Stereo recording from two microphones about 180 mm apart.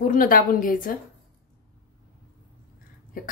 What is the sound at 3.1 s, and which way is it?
Speech, 50° left (ahead or behind).